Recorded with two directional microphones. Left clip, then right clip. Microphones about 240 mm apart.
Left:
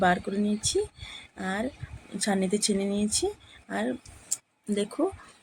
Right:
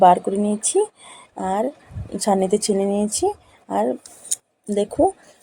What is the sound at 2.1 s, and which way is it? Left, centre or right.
Speech, centre.